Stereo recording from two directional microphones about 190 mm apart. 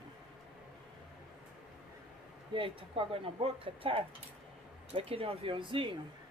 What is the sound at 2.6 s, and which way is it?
Speech, 30° right (ahead or behind).